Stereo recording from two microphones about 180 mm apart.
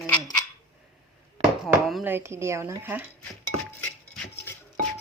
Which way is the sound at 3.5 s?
90° right.